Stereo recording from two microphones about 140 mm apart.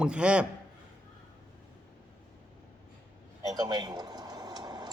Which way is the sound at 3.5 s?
30° right (ahead or behind).